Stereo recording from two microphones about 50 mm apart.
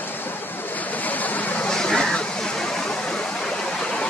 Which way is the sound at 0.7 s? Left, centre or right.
Left.